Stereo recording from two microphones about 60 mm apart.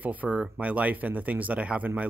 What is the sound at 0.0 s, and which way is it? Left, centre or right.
Speech, right.